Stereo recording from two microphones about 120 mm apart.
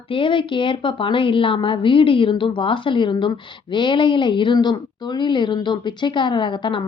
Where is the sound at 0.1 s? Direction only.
45° left (ahead or behind).